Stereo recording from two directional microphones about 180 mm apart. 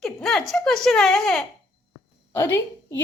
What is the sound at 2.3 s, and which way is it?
Speech, 15° left (ahead or behind).